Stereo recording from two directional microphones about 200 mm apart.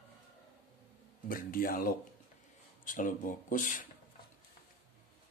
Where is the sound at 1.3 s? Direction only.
45° left (ahead or behind).